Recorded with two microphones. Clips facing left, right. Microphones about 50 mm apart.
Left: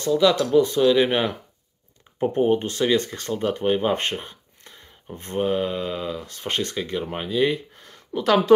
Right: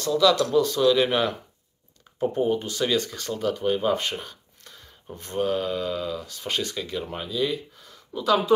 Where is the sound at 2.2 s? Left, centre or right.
Left.